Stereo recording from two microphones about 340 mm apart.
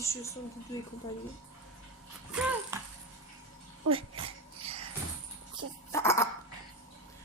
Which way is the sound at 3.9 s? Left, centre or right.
Centre.